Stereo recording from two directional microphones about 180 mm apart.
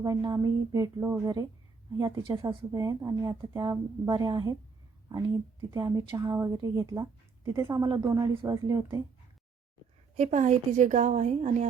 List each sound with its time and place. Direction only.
0.0 s a woman's voice: 25° right (ahead or behind)
10.2 s a woman's voice: 40° right (ahead or behind)